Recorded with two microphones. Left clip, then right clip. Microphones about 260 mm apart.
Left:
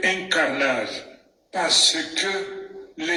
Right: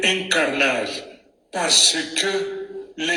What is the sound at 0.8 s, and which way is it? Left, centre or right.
A man's voice, right.